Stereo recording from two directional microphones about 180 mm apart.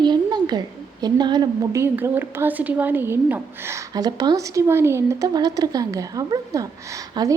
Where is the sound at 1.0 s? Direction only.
25° right (ahead or behind).